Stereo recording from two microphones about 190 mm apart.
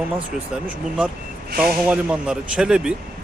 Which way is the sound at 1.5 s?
50° right (ahead or behind).